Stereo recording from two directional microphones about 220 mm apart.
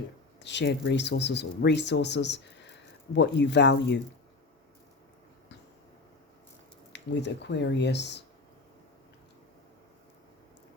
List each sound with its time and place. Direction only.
0.3 s speech: 55° left (ahead or behind)
6.9 s speech: 50° left (ahead or behind)